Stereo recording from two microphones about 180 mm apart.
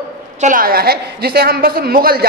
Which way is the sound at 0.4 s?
50° right (ahead or behind).